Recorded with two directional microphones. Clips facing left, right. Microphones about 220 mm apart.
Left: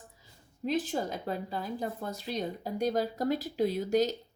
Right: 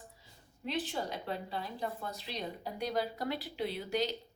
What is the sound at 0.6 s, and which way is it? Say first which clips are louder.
A woman's voice: left 6 dB; 45° left (ahead or behind).